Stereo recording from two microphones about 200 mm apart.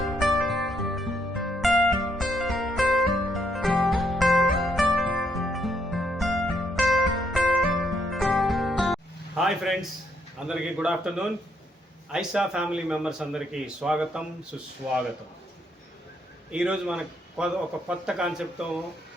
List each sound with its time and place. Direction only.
0.0 s music: centre (ahead or behind)
9.4 s a man's voice: centre (ahead or behind)
16.5 s a man's voice: 5° right (ahead or behind)